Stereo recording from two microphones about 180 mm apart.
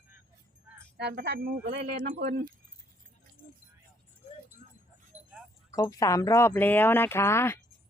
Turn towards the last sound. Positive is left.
turn(degrees=15)  # may be behind; listen again after turning